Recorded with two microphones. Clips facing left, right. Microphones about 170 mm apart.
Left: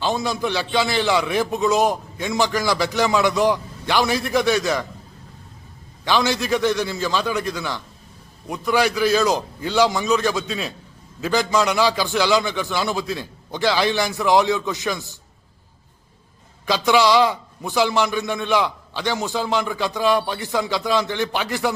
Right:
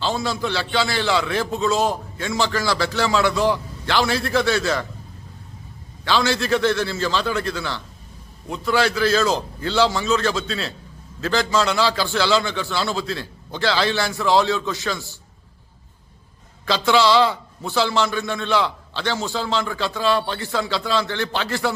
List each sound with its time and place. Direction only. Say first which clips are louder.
0.0 s a man's voice: left 1 dB; 15° left (ahead or behind)
6.1 s a man's voice: even; 15° left (ahead or behind)
16.6 s a man's voice: even; 15° left (ahead or behind)